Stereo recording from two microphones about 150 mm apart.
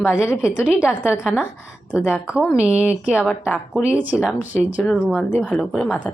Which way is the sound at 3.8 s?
10° right (ahead or behind).